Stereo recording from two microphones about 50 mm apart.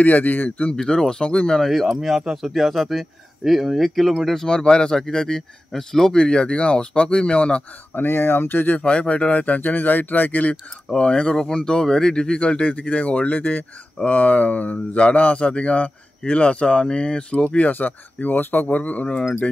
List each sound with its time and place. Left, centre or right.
0.0 s speech: left
0.7 s speech: centre
1.7 s speech: centre; by 7.6 s left
7.9 s speech: left
8.7 s speech: left
10.9 s speech: centre
19.1 s speech: centre